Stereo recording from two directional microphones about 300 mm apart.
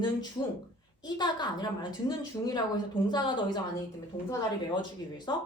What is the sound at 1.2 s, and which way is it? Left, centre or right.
A woman's voice, centre.